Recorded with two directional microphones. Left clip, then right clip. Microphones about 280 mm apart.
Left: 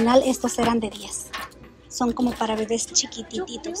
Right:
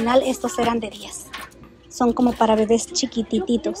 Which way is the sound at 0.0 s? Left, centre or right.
Centre.